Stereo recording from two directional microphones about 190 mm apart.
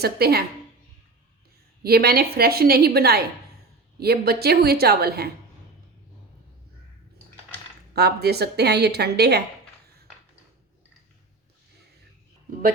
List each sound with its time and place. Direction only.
0.0 s a woman's voice: 55° right (ahead or behind)
1.8 s a woman's voice: 55° right (ahead or behind)
7.9 s a woman's voice: 60° right (ahead or behind)